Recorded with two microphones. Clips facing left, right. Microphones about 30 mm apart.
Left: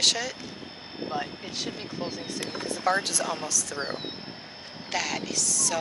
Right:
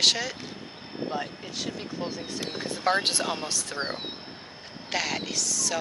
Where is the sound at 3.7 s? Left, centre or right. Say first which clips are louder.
Even; centre.